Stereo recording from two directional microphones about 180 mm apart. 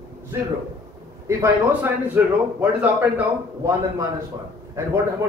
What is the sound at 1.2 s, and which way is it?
A man's voice, 15° right (ahead or behind).